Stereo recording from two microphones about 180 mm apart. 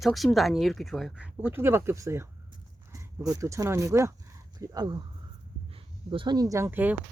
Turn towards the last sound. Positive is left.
turn(degrees=-10)  # may be behind; listen again after turning